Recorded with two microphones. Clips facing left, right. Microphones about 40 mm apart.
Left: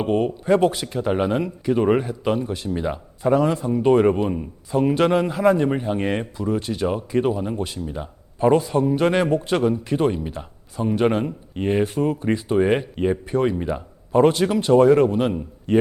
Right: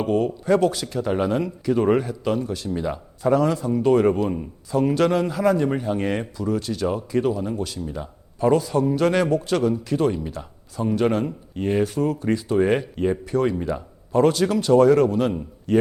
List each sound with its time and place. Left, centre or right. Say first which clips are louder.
0.0 s speech: left 1 dB; left